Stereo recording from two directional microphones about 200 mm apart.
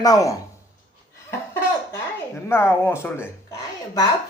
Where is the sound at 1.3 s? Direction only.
15° left (ahead or behind).